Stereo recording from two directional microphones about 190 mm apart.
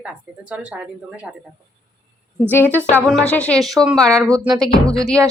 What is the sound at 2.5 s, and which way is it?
A woman's voice, 10° left (ahead or behind).